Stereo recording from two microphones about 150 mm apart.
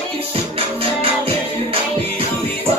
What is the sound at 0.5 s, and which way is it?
Music, 40° right (ahead or behind).